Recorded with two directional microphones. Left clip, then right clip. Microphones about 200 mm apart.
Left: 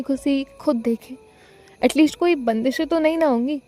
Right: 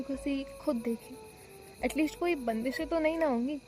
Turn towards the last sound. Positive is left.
turn(degrees=45)  # may be behind; listen again after turning